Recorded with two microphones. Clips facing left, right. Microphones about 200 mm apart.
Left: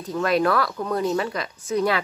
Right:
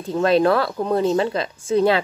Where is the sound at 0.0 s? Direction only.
30° right (ahead or behind).